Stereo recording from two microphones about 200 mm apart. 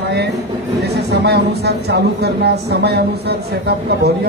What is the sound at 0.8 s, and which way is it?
Speech, 55° right (ahead or behind).